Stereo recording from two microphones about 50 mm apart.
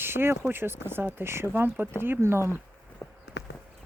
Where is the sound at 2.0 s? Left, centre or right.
Right.